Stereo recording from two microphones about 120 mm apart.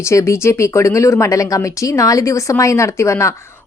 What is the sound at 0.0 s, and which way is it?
Speech, 25° left (ahead or behind).